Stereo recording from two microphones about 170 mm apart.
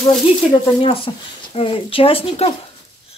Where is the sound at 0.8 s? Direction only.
30° left (ahead or behind).